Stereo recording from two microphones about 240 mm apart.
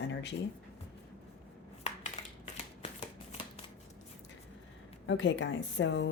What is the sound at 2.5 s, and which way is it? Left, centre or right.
Shuffling cards, left.